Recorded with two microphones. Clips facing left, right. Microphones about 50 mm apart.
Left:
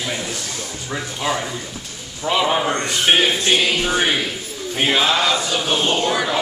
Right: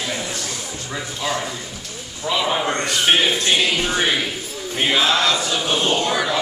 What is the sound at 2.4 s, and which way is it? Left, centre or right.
Choir, centre.